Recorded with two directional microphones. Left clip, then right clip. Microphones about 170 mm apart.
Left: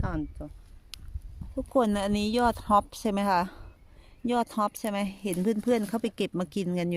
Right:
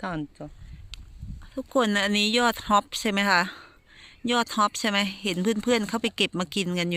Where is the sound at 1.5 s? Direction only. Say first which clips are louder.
Even; 15° right (ahead or behind).